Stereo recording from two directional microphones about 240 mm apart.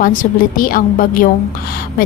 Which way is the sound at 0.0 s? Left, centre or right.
Left.